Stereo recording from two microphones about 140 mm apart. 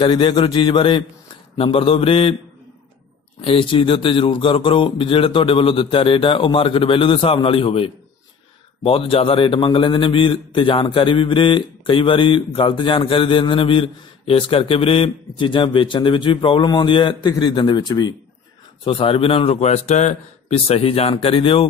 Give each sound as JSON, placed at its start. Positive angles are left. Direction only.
{"t": 0.0, "sound": "a man's voice", "side_deg": 35}
{"t": 3.3, "sound": "a man's voice", "side_deg": 40}
{"t": 18.9, "sound": "a man's voice", "side_deg": 40}